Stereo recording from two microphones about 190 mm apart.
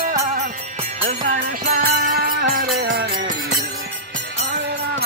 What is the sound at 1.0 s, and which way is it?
Music, 45° right (ahead or behind).